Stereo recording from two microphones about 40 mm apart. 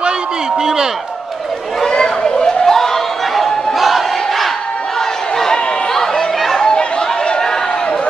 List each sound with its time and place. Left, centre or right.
1.9 s a sound: centre
3.7 s battle cry: centre
5.4 s chatter: centre
6.7 s chatter: left